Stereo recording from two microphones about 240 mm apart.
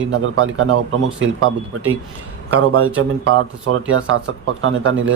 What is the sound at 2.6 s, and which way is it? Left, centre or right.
Speech, right.